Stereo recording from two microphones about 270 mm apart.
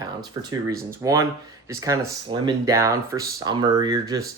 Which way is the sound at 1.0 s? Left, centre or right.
Centre.